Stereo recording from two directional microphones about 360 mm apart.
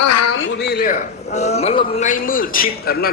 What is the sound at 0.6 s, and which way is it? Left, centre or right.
Speech, left.